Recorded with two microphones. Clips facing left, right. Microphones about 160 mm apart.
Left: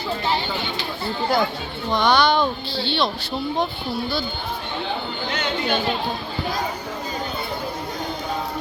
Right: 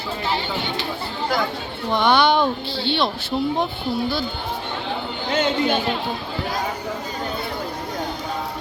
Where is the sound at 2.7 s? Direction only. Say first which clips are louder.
Even; 50° right (ahead or behind).